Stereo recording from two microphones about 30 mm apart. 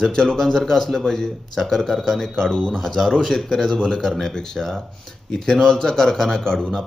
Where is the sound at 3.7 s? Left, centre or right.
Left.